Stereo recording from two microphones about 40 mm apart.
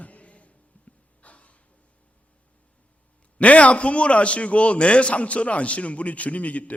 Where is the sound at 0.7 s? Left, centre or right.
Left.